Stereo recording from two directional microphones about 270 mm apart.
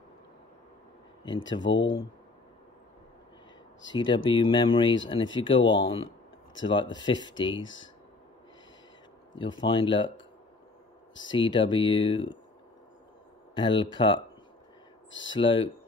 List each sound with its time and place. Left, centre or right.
1.6 s speech: left
3.9 s speech: centre
9.4 s speech: centre
11.3 s speech: centre
13.6 s speech: centre
15.0 s speech: left
15.3 s speech: centre